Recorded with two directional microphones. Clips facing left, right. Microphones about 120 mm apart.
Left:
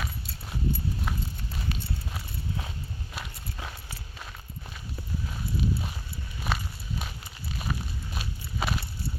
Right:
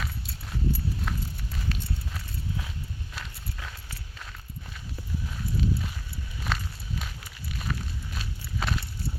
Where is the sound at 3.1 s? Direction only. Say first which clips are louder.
Left 1 dB; 20° left (ahead or behind).